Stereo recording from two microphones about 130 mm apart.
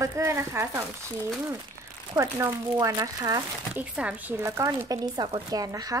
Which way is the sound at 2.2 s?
25° right (ahead or behind).